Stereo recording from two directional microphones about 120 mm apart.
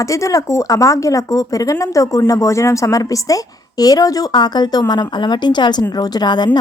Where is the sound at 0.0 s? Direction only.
25° left (ahead or behind).